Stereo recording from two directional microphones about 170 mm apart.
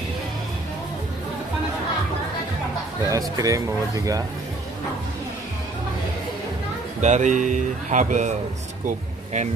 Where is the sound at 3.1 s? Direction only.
20° right (ahead or behind).